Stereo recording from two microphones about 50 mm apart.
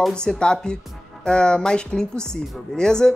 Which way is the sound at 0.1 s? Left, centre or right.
Centre.